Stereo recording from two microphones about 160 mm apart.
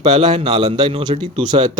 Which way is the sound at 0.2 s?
40° right (ahead or behind).